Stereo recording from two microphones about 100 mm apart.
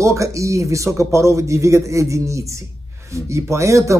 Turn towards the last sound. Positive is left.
turn(degrees=-30)  # may be behind; listen again after turning